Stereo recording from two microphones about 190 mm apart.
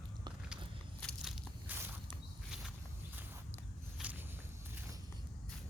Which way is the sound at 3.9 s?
5° right (ahead or behind).